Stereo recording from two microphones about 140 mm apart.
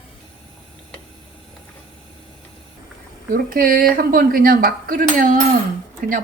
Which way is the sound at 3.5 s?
90° right.